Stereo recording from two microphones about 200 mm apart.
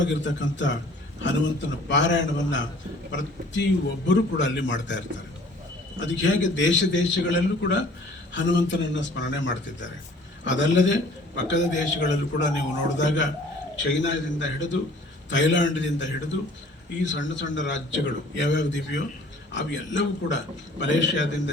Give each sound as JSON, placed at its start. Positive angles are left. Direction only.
{"t": 0.0, "sound": "a man's voice", "side_deg": 65}
{"t": 1.9, "sound": "a man's voice", "side_deg": 65}